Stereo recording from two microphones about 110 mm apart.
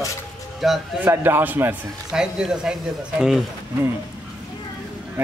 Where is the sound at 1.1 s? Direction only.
20° right (ahead or behind).